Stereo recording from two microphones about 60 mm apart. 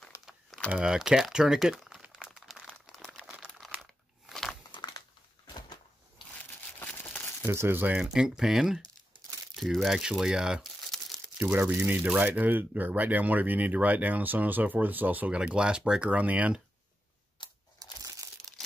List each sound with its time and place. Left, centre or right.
0.7 s speech: centre
2.3 s crumpling: centre
3.1 s a sound: centre
4.3 s crumpling: centre
6.3 s crumpling: left
7.4 s speech: right
8.0 s speech: centre
10.6 s crumpling: centre
12.0 s speech: right
17.8 s crumpling: right